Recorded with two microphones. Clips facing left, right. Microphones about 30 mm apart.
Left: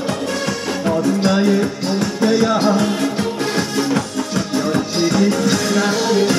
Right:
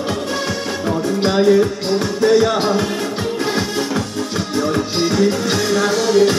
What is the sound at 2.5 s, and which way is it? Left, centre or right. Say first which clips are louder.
Music: left 2 dB; centre.